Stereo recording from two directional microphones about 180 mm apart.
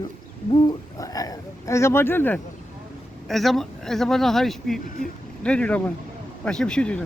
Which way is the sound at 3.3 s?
Centre (ahead or behind).